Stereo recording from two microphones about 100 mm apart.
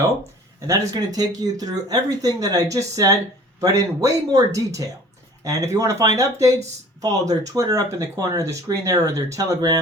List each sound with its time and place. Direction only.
0.7 s speech: 40° right (ahead or behind)